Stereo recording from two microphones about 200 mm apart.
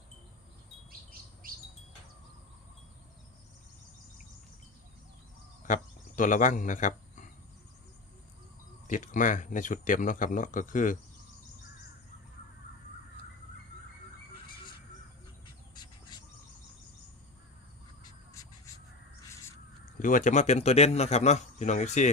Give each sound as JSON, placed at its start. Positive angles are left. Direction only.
{"t": 1.4, "sound": "bird", "side_deg": -45}
{"t": 5.6, "sound": "speech", "side_deg": 40}
{"t": 8.9, "sound": "a man's voice", "side_deg": 40}
{"t": 15.7, "sound": "a sound", "side_deg": 20}
{"t": 19.3, "sound": "crow", "side_deg": 15}
{"t": 19.8, "sound": "a man's voice", "side_deg": 40}